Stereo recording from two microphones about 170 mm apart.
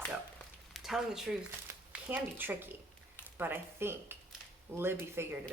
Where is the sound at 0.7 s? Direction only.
Centre (ahead or behind).